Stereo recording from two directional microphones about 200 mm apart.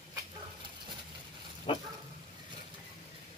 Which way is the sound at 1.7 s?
30° left (ahead or behind).